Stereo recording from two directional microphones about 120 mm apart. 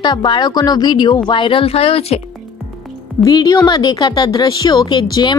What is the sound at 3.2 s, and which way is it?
A woman's voice, 35° left (ahead or behind).